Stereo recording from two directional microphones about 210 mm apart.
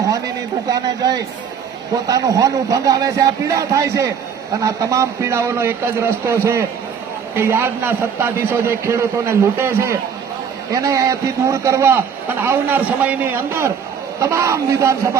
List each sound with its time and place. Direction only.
0.7 s a man's voice: 20° right (ahead or behind)